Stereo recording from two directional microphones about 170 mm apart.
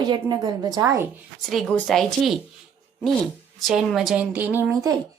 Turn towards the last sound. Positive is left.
turn(degrees=-10)  # may be behind; listen again after turning